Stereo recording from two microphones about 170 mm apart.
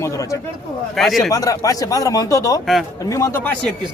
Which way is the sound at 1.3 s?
20° left (ahead or behind).